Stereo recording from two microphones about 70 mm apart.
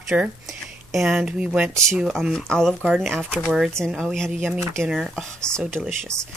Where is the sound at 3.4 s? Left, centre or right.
Centre.